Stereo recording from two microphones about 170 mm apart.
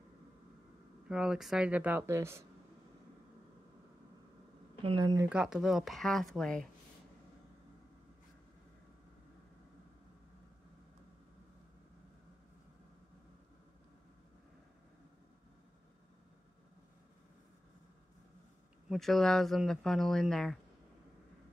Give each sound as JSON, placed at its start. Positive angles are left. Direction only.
{"t": 1.0, "sound": "speech", "side_deg": -5}
{"t": 4.8, "sound": "speech", "side_deg": -25}
{"t": 5.3, "sound": "speech", "side_deg": -5}
{"t": 18.9, "sound": "speech", "side_deg": 0}